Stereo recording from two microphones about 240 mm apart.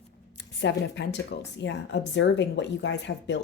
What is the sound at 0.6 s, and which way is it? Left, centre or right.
A woman's voice, left.